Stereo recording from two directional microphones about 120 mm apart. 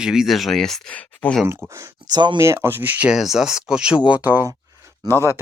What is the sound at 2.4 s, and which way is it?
Speech, 20° right (ahead or behind).